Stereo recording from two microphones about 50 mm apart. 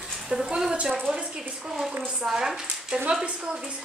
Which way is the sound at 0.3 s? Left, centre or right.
Centre.